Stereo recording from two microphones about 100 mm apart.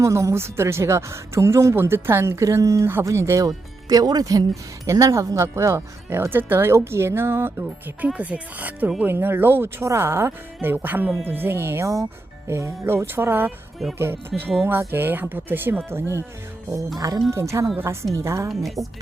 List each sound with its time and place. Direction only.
0.0 s a woman's voice: 30° right (ahead or behind)
8.0 s a woman's voice: 15° right (ahead or behind)
17.0 s a woman's voice: 35° right (ahead or behind)